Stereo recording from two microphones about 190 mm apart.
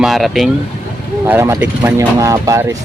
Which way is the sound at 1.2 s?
15° right (ahead or behind).